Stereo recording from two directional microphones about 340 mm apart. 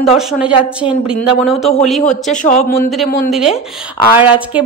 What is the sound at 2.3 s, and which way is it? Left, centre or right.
Speech, left.